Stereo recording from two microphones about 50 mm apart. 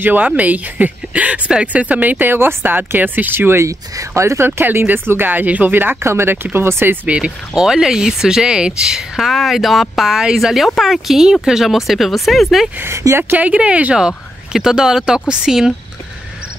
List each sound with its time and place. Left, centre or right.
0.0 s speech: right
3.3 s speech: right
3.6 s speech: right
4.5 s speech: right
6.0 s speech: right
7.1 s speech: right
7.6 s speech: centre
9.1 s speech: centre
12.8 s speech: right
13.3 s speech: right
13.9 s speech: centre